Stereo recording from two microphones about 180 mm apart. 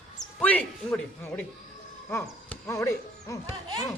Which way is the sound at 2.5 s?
15° left (ahead or behind).